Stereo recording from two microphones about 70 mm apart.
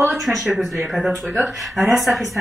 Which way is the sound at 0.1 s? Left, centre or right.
Centre.